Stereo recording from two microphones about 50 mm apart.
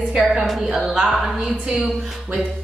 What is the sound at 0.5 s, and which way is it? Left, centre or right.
Speech, centre.